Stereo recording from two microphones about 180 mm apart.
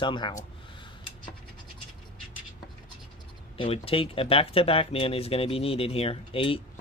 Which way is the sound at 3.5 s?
35° left (ahead or behind).